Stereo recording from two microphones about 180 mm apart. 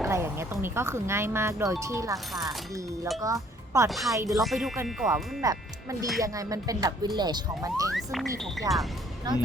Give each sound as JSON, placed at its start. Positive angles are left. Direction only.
{"t": 0.0, "sound": "speech", "side_deg": -15}
{"t": 3.2, "sound": "speech", "side_deg": -20}
{"t": 3.8, "sound": "speech", "side_deg": 0}
{"t": 4.1, "sound": "speech", "side_deg": -20}
{"t": 4.4, "sound": "speech", "side_deg": 0}
{"t": 5.4, "sound": "speech", "side_deg": -20}
{"t": 7.9, "sound": "speech", "side_deg": 0}